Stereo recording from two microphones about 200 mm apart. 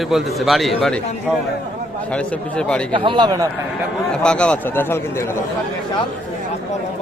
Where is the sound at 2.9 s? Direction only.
25° right (ahead or behind).